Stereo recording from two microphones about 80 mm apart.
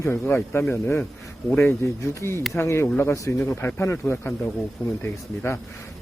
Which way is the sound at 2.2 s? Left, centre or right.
Left.